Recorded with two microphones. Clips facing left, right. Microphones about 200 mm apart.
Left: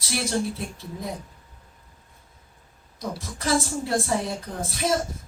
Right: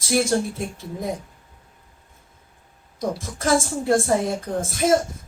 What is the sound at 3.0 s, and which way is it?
A woman's voice, 50° right (ahead or behind).